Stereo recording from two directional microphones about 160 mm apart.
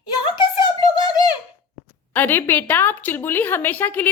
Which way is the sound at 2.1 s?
10° left (ahead or behind).